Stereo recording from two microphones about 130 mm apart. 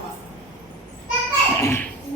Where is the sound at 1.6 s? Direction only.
20° left (ahead or behind).